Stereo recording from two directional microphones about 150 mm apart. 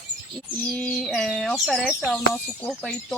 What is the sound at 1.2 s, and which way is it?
Speech, centre (ahead or behind).